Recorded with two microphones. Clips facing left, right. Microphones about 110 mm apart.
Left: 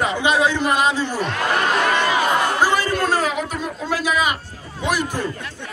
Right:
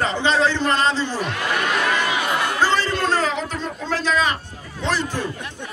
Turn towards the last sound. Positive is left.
turn(degrees=-20)  # may be behind; listen again after turning